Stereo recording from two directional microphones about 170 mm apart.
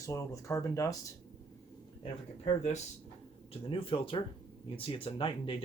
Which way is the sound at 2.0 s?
35° left (ahead or behind).